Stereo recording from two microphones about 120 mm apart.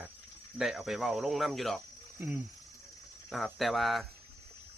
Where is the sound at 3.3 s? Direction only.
Centre (ahead or behind).